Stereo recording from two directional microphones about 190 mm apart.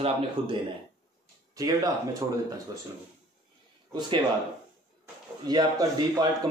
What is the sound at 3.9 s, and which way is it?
Speech, 20° right (ahead or behind).